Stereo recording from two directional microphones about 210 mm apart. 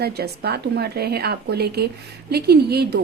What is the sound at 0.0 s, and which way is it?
A woman's voice, 50° right (ahead or behind).